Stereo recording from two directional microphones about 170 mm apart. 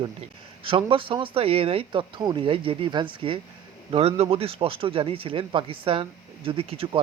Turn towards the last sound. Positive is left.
turn(degrees=-35)  # may be behind; listen again after turning